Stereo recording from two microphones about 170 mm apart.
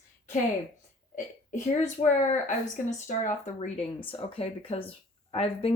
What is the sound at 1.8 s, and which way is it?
Speech, 45° left (ahead or behind).